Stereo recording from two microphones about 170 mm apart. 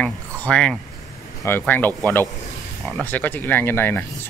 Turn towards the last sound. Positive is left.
turn(degrees=10)  # may be behind; listen again after turning